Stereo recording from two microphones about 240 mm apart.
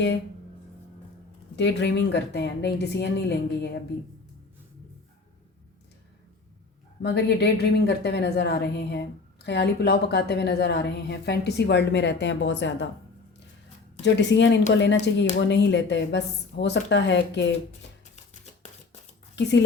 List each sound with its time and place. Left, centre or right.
1.5 s a woman's voice: left
7.0 s a woman's voice: left
14.0 s a woman's voice: left
19.4 s a woman's voice: left